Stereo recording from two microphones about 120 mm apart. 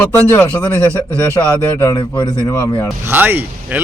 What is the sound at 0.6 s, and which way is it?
A man's voice, 25° left (ahead or behind).